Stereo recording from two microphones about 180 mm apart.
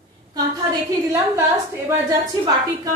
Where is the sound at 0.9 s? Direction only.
15° right (ahead or behind).